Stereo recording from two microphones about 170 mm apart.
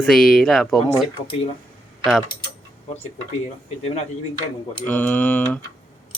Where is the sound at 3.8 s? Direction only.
40° left (ahead or behind).